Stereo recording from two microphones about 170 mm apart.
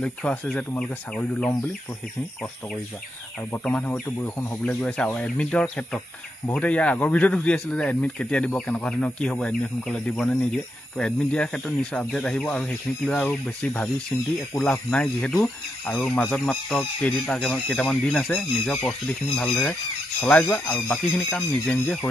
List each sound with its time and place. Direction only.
0.0 s speech: 5° left (ahead or behind)
3.5 s speech: 10° left (ahead or behind)